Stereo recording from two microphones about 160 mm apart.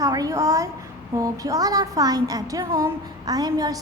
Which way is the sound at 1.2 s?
20° right (ahead or behind).